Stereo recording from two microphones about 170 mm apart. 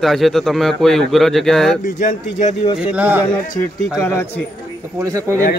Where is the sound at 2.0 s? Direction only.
45° left (ahead or behind).